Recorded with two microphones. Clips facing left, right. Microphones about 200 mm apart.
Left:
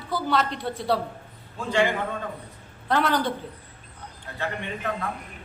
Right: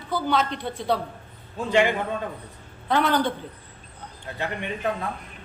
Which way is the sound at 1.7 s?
15° right (ahead or behind).